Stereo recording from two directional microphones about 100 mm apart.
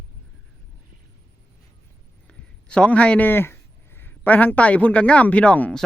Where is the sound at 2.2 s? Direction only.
10° left (ahead or behind).